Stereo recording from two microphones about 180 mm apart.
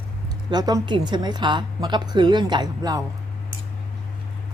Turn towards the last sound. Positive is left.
turn(degrees=-20)  # may be behind; listen again after turning